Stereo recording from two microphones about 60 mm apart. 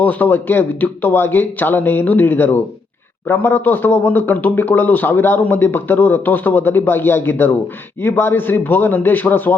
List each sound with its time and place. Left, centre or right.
0.0 s a man's voice: left